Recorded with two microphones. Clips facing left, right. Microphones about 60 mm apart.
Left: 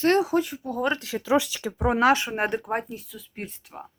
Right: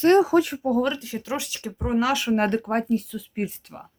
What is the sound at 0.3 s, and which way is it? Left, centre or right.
Speech, right.